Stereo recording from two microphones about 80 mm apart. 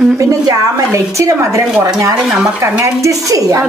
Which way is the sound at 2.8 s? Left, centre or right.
Right.